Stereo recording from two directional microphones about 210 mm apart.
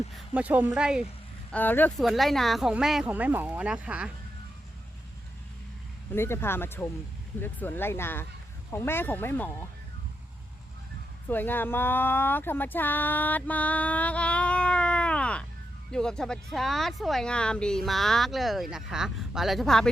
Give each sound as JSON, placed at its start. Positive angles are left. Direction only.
{"t": 0.3, "sound": "speech", "side_deg": -5}
{"t": 1.5, "sound": "speech", "side_deg": 10}
{"t": 6.1, "sound": "speech", "side_deg": 10}
{"t": 11.3, "sound": "speech", "side_deg": 10}